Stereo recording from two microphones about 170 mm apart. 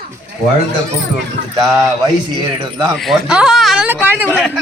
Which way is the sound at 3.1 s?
5° right (ahead or behind).